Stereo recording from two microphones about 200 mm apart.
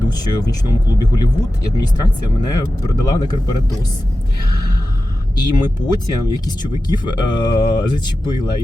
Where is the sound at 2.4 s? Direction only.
20° left (ahead or behind).